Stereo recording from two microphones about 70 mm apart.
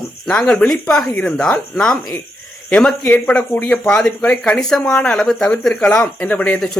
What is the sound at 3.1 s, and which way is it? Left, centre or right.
A man's voice, centre.